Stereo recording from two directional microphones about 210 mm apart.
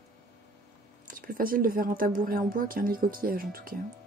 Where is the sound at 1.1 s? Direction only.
40° right (ahead or behind).